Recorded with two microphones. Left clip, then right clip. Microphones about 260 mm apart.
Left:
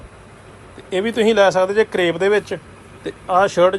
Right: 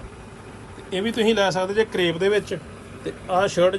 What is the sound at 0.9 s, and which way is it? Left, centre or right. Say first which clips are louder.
Speech: left 5 dB; centre.